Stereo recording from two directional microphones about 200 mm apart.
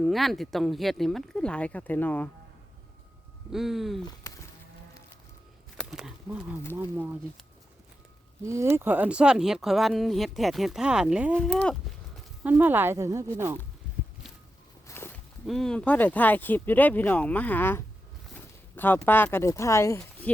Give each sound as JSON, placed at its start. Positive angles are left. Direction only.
{"t": 0.0, "sound": "speech", "side_deg": 0}
{"t": 3.5, "sound": "speech", "side_deg": 0}
{"t": 4.0, "sound": "a sound", "side_deg": 15}
{"t": 5.7, "sound": "a sound", "side_deg": 0}
{"t": 6.7, "sound": "speech", "side_deg": -10}
{"t": 8.4, "sound": "speech", "side_deg": -15}
{"t": 11.4, "sound": "clip-clop", "side_deg": 5}
{"t": 12.4, "sound": "speech", "side_deg": -10}
{"t": 14.8, "sound": "walk", "side_deg": 10}
{"t": 15.4, "sound": "speech", "side_deg": 0}
{"t": 19.0, "sound": "speech", "side_deg": 10}